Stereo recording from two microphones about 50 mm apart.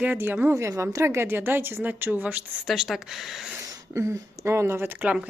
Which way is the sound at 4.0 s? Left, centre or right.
Right.